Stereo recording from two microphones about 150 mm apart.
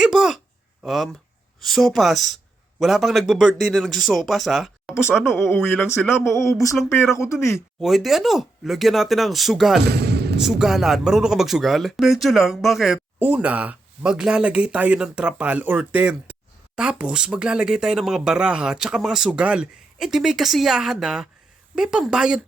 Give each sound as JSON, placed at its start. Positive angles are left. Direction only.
{"t": 0.0, "sound": "speech", "side_deg": 0}
{"t": 5.3, "sound": "speech", "side_deg": 15}
{"t": 6.1, "sound": "speech", "side_deg": 0}
{"t": 6.5, "sound": "speech", "side_deg": 20}
{"t": 7.5, "sound": "speech", "side_deg": 0}
{"t": 9.8, "sound": "a sound", "side_deg": -90}
{"t": 10.4, "sound": "speech", "side_deg": 0}